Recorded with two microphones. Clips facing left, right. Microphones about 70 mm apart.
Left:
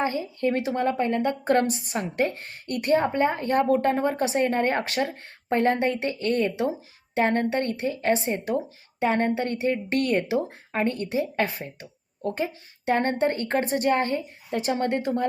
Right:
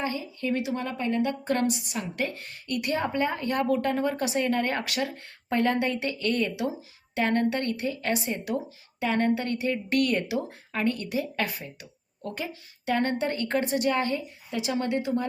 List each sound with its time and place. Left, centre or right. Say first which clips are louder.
0.0 s speech: left 5 dB; left